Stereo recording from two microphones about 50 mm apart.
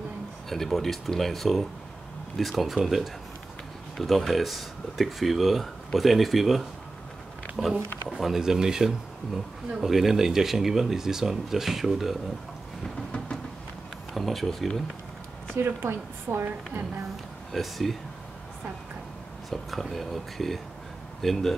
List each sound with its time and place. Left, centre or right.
0.5 s speech: centre
14.1 s speech: centre
15.5 s a woman's voice: right
17.5 s speech: centre
19.5 s speech: centre